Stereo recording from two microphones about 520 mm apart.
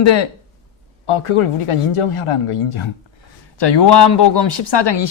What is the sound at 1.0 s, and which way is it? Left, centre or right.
A man's voice, left.